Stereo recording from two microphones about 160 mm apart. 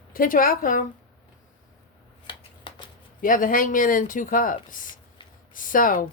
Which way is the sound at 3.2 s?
60° left (ahead or behind).